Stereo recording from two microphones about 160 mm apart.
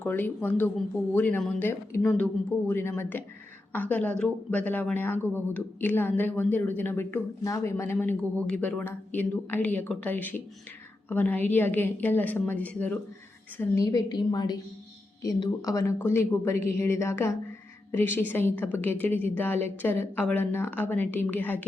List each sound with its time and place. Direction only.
0.0 s speech: 10° left (ahead or behind)
13.6 s a woman's voice: 20° left (ahead or behind)